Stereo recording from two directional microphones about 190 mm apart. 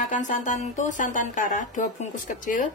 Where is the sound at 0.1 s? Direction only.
40° left (ahead or behind).